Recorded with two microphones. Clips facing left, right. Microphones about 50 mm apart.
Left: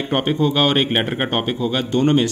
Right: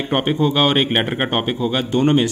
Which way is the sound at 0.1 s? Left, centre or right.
Centre.